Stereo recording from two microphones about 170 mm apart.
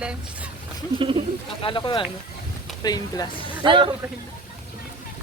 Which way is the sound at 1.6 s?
30° left (ahead or behind).